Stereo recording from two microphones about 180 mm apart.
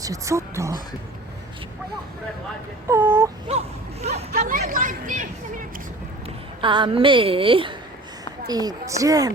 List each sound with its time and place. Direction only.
0.0 s speech: 15° right (ahead or behind)
2.8 s speech: 10° right (ahead or behind)
4.0 s speech: 40° right (ahead or behind)
6.6 s a woman's voice: 25° right (ahead or behind)